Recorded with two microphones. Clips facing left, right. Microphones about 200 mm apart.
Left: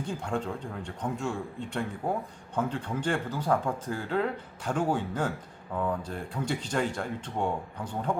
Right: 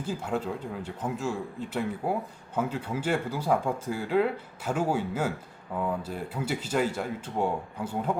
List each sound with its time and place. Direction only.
0.0 s speech: 5° right (ahead or behind)